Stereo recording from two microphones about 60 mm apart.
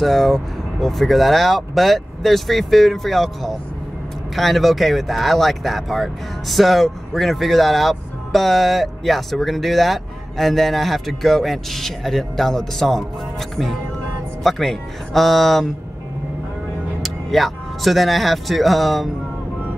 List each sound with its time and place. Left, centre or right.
0.0 s speech: centre
14.4 s speech: centre
17.0 s speech: centre